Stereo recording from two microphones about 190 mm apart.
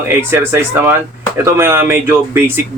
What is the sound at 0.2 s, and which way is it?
Speech, 15° right (ahead or behind).